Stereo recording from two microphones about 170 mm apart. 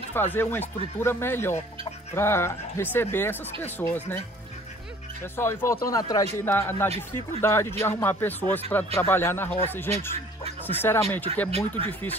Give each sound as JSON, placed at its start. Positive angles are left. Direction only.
{"t": 0.1, "sound": "speech", "side_deg": 15}
{"t": 5.3, "sound": "speech", "side_deg": 15}